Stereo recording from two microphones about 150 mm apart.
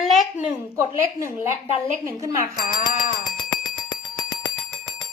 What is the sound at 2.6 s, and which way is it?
Speech, 60° left (ahead or behind).